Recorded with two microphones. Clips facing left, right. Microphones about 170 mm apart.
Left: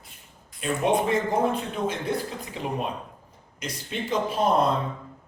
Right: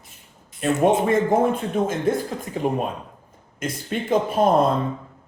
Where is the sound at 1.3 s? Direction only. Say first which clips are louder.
Right 5 dB; 45° right (ahead or behind).